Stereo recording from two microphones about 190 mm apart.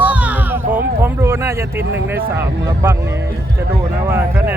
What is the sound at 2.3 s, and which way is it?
Speech, 15° right (ahead or behind).